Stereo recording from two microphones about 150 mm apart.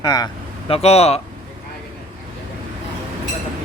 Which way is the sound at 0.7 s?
45° left (ahead or behind).